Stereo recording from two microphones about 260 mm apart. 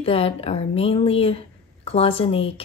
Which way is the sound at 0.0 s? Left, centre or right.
Left.